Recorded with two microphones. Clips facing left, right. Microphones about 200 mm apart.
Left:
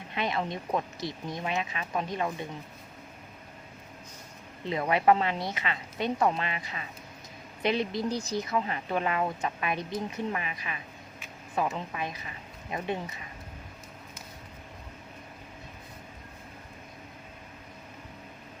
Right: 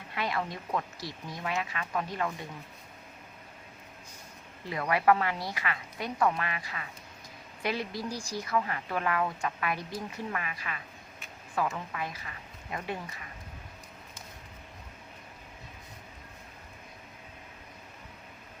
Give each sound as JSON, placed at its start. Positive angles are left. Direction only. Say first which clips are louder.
{"t": 0.1, "sound": "speech", "louder": "left 2 dB", "side_deg": 20}
{"t": 4.6, "sound": "speech", "louder": "left 2 dB", "side_deg": 20}